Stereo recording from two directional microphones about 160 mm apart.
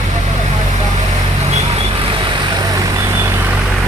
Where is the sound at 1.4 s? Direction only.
40° right (ahead or behind); by 3.6 s 15° right (ahead or behind).